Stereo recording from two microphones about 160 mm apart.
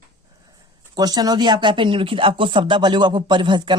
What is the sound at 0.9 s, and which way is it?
Speech, 25° right (ahead or behind).